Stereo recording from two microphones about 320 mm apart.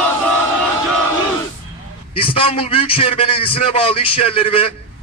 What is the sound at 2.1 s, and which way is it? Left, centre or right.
A man's voice, centre.